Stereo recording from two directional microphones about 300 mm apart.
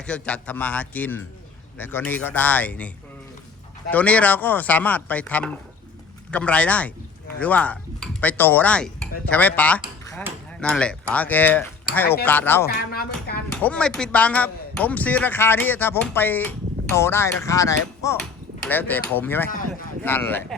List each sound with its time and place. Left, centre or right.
0.0 s speech: centre
3.9 s speech: centre
12.6 s speech: left
13.5 s speech: centre